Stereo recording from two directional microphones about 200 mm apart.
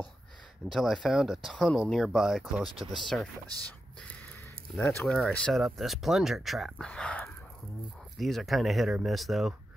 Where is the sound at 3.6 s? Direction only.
5° left (ahead or behind).